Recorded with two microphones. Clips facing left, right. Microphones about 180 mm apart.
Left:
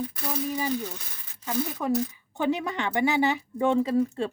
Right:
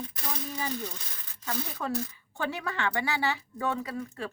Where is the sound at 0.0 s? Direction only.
10° left (ahead or behind).